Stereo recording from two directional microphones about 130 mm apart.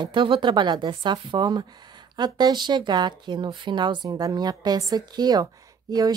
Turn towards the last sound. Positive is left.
turn(degrees=-30)  # may be behind; listen again after turning